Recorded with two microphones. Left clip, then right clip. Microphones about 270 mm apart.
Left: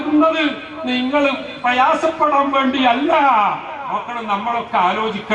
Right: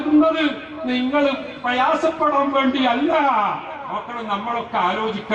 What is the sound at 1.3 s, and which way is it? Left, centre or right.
A man's voice, centre.